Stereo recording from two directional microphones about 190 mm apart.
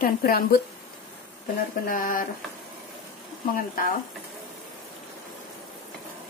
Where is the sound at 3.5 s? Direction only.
50° left (ahead or behind).